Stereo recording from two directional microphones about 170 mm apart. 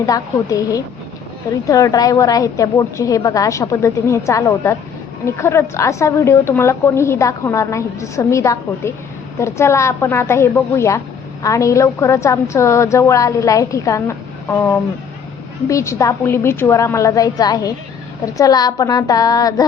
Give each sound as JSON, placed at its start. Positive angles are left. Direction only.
{"t": 0.0, "sound": "a woman's voice", "side_deg": 20}